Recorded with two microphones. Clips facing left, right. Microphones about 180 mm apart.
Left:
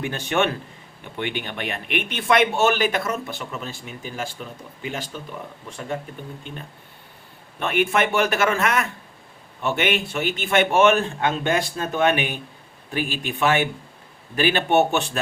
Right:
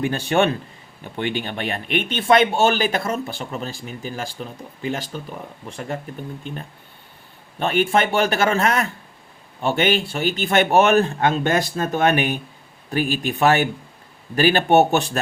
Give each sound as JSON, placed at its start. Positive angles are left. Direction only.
{"t": 0.0, "sound": "speech", "side_deg": -35}
{"t": 7.6, "sound": "speech", "side_deg": -30}